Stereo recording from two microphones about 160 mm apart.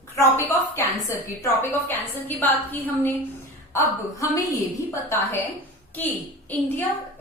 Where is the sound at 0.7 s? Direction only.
15° left (ahead or behind).